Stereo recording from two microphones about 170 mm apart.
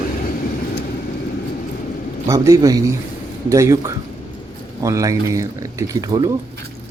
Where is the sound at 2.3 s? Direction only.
20° right (ahead or behind).